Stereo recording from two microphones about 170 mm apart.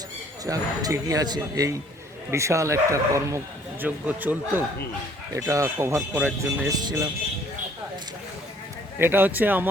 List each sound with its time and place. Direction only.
0.4 s speech: 20° right (ahead or behind)
6.7 s speech: 25° right (ahead or behind)
9.0 s speech: 10° right (ahead or behind)